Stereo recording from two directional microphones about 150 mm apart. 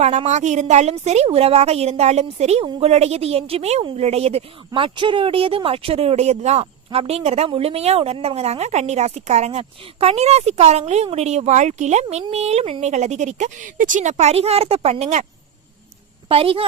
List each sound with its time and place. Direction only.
0.0 s speech: 50° right (ahead or behind)
12.0 s speech: 40° right (ahead or behind)
16.3 s a woman's voice: 40° right (ahead or behind)